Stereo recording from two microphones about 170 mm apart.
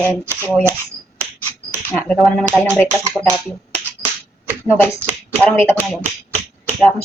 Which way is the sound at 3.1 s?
15° right (ahead or behind).